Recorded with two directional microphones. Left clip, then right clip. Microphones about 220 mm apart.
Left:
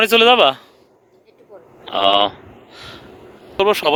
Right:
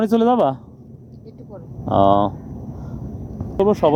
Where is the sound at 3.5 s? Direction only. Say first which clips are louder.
Left 2 dB; 25° left (ahead or behind).